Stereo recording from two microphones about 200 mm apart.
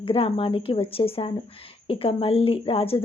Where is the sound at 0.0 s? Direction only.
25° left (ahead or behind).